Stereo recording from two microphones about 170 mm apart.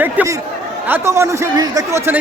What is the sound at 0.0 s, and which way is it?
A man's voice, 10° right (ahead or behind).